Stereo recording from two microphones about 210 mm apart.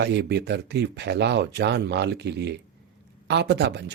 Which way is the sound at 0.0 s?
55° right (ahead or behind).